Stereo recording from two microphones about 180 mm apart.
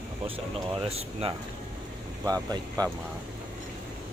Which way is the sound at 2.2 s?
20° right (ahead or behind).